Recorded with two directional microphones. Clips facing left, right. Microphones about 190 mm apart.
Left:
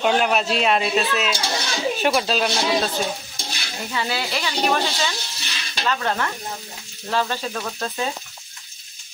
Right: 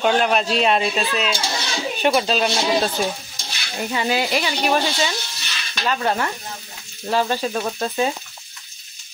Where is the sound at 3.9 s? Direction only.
15° right (ahead or behind).